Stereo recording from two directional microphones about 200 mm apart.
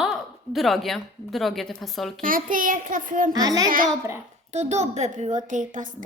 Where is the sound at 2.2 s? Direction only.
45° right (ahead or behind).